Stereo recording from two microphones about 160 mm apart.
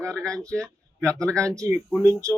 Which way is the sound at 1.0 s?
20° right (ahead or behind).